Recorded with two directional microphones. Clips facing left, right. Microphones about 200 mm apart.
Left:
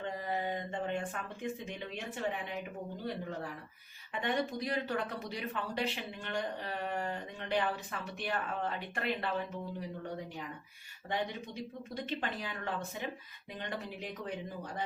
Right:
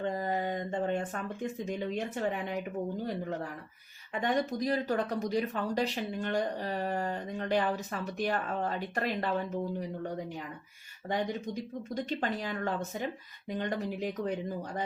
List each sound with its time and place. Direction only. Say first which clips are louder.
0.1 s a sound: right 4 dB; 40° right (ahead or behind)
4.2 s speech: right 4 dB; 40° right (ahead or behind)
11.1 s speech: right 5 dB; 45° right (ahead or behind)